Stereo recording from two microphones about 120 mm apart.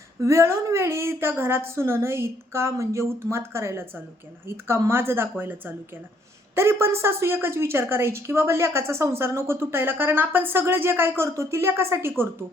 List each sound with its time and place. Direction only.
0.2 s a woman's voice: 25° right (ahead or behind)